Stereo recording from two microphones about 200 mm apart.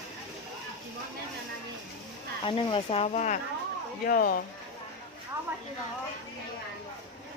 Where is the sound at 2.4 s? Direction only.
25° left (ahead or behind); by 4.4 s 45° left (ahead or behind).